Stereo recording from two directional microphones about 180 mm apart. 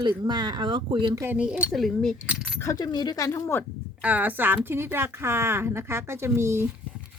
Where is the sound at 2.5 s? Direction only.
20° left (ahead or behind).